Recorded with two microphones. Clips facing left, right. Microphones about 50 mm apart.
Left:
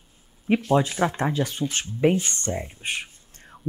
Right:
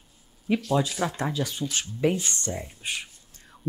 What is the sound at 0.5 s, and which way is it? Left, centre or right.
A woman's voice, left.